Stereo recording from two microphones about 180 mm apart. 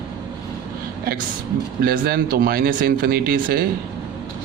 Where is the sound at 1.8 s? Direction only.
55° right (ahead or behind).